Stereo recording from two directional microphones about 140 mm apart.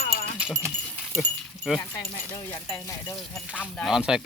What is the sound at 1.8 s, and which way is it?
Speech, 15° left (ahead or behind).